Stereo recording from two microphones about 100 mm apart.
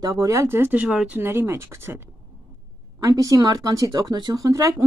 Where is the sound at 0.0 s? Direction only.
35° right (ahead or behind); by 0.8 s 20° right (ahead or behind).